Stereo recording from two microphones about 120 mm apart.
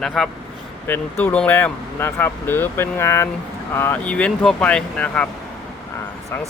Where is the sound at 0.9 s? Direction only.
15° left (ahead or behind).